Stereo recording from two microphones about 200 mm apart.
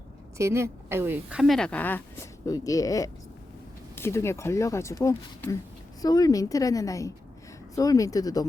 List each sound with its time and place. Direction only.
0.3 s speech: 15° right (ahead or behind); by 8.4 s 20° left (ahead or behind)